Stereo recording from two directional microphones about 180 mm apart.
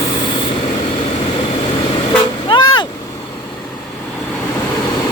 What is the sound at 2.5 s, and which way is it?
Vehicle, 25° left (ahead or behind).